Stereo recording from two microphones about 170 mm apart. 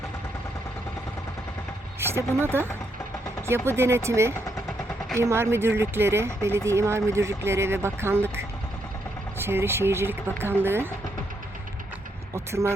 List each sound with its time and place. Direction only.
2.0 s speech: 15° right (ahead or behind)
3.7 s speech: 15° right (ahead or behind)
12.3 s speech: 15° right (ahead or behind)